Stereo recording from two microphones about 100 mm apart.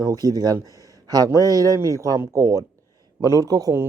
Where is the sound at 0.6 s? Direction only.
35° right (ahead or behind).